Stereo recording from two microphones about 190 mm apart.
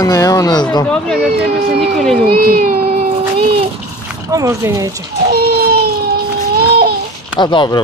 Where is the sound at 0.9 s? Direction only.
5° left (ahead or behind).